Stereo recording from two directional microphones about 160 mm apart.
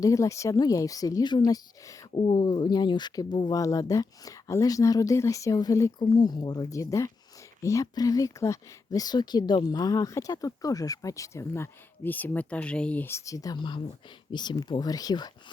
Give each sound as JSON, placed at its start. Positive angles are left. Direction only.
{"t": 0.0, "sound": "speech", "side_deg": 20}